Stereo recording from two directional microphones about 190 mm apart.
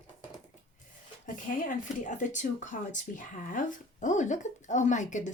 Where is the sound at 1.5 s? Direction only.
45° left (ahead or behind).